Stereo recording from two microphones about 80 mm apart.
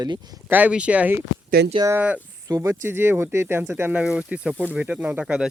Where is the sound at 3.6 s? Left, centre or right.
Centre.